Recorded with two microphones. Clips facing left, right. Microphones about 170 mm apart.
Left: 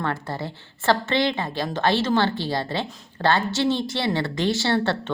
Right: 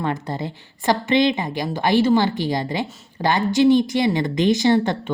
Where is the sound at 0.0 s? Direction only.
20° right (ahead or behind).